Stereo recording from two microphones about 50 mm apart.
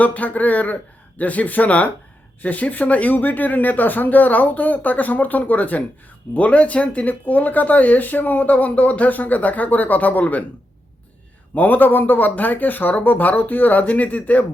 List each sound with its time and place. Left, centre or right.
0.0 s speech: left
11.5 s speech: left